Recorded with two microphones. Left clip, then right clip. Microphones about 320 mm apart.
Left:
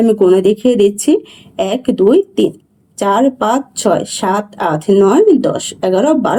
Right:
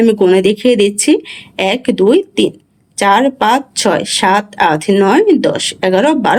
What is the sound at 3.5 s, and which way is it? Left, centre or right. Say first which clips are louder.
Speech: right 1 dB; right.